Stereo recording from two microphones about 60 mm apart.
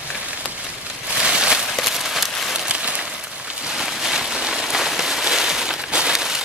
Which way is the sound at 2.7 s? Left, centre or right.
Centre.